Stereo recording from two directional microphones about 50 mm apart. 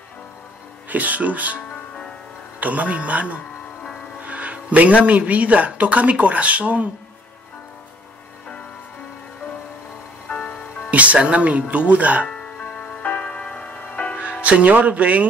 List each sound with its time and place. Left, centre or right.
0.8 s speech: right
2.6 s speech: right
10.2 s music: left
10.9 s speech: right
12.3 s music: centre
14.3 s speech: right